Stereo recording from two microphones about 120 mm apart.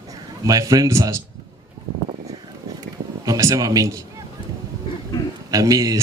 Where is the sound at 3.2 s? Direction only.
30° right (ahead or behind).